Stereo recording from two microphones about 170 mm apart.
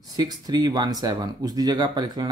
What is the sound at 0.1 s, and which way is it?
Speech, 25° right (ahead or behind).